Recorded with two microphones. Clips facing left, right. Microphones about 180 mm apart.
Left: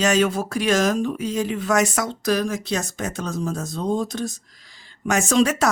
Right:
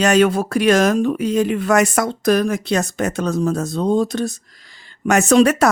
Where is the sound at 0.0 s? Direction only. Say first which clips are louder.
Right 5 dB; 60° right (ahead or behind).